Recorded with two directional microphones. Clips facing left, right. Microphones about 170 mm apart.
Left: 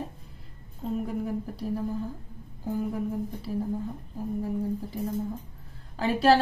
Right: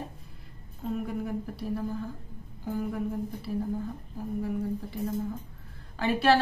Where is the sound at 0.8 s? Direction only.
25° left (ahead or behind).